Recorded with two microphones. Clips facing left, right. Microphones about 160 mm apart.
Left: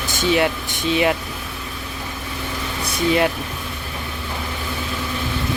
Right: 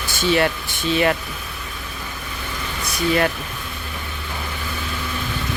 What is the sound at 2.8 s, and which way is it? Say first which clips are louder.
Vehicle: left 1 dB; 25° left (ahead or behind).